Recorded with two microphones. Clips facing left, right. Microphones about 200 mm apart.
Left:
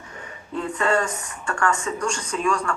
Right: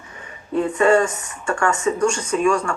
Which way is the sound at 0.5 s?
15° right (ahead or behind).